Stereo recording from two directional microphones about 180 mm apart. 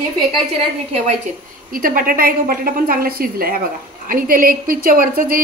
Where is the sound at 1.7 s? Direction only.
50° right (ahead or behind).